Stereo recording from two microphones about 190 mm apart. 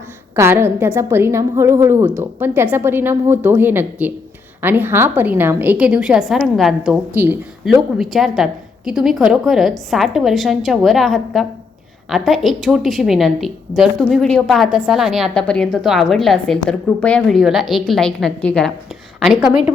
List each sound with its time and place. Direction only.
0.3 s a woman's voice: 15° right (ahead or behind)